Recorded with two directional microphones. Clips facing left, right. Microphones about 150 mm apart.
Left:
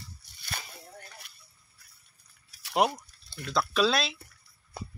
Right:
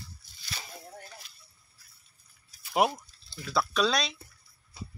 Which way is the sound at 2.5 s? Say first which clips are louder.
Left 2 dB; 80° left.